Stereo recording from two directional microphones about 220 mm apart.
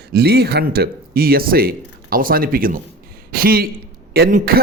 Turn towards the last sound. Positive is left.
turn(degrees=-40)  # may be behind; listen again after turning